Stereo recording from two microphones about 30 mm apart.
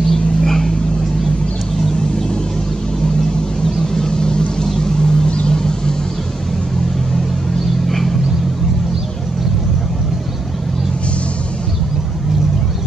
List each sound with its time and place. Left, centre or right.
0.1 s vehicle: centre
3.8 s vehicle: left